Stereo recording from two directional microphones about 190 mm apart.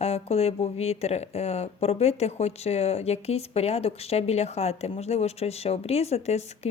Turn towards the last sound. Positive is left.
turn(degrees=35)  # may be behind; listen again after turning